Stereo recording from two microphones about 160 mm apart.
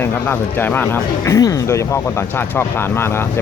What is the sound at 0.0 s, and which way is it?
Speech, 15° left (ahead or behind).